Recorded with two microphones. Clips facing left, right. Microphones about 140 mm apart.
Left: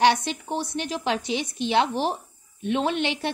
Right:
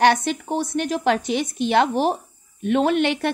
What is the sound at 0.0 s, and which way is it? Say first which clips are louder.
A woman's voice: right 3 dB; 50° right (ahead or behind).